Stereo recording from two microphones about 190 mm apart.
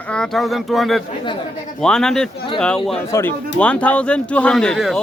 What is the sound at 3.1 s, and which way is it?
Speech, 15° left (ahead or behind).